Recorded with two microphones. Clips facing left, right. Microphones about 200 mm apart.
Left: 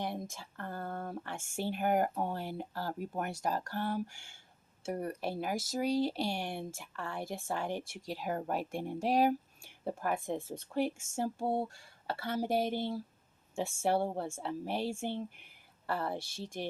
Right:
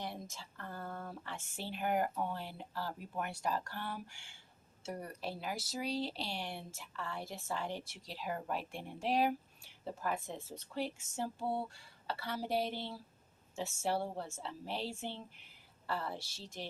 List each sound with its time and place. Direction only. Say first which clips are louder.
0.0 s speech: left 6 dB; 55° left (ahead or behind)